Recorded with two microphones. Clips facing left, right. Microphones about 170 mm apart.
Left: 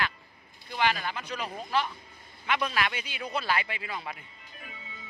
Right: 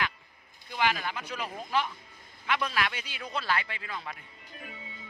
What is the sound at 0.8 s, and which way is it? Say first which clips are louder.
Speech: left 1 dB; 10° right (ahead or behind).